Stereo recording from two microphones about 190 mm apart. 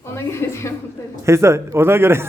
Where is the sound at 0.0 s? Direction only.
15° left (ahead or behind).